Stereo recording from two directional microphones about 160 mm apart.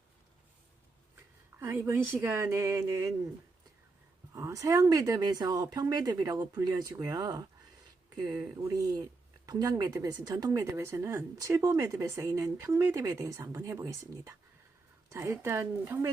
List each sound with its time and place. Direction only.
1.5 s a woman's voice: 15° right (ahead or behind)
4.4 s speech: 20° right (ahead or behind)